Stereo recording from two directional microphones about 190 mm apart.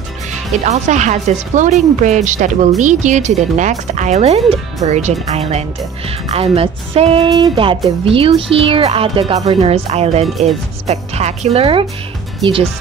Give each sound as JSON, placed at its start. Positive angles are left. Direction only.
{"t": 0.3, "sound": "speech", "side_deg": -40}